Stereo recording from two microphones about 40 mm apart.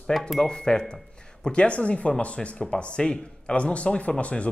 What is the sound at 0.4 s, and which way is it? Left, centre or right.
Speech, centre.